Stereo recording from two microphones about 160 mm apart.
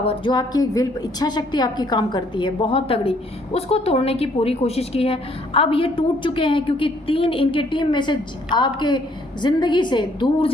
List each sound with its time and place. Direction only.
0.0 s a woman's voice: 35° left (ahead or behind)